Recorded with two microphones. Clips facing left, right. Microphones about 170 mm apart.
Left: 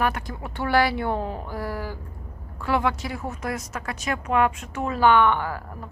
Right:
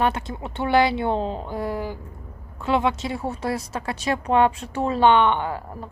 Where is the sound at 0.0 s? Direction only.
25° right (ahead or behind).